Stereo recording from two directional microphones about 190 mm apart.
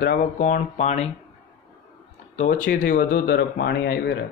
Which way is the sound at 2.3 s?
40° left (ahead or behind).